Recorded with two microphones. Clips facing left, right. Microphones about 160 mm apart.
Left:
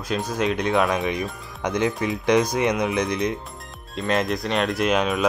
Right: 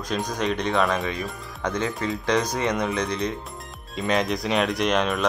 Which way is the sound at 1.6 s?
15° left (ahead or behind).